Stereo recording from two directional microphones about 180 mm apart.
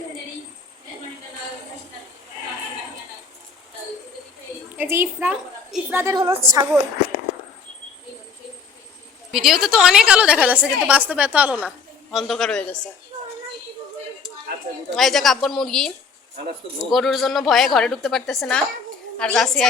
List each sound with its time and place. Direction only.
4.8 s a woman's voice: 10° right (ahead or behind)
9.3 s a woman's voice: centre (ahead or behind)
14.9 s a woman's voice: centre (ahead or behind)